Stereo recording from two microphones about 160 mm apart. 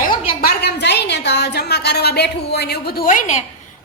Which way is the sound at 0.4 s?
90° left.